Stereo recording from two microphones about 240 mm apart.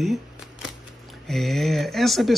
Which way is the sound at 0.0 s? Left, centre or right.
Centre.